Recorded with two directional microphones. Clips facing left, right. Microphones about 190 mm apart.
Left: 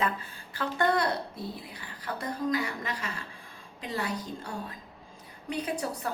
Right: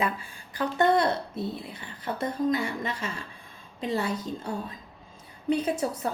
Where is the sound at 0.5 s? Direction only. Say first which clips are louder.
Right 4 dB; 20° right (ahead or behind).